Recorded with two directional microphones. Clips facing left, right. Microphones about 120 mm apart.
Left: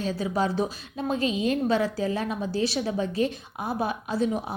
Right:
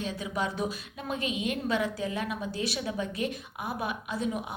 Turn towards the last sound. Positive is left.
turn(degrees=30)  # may be behind; listen again after turning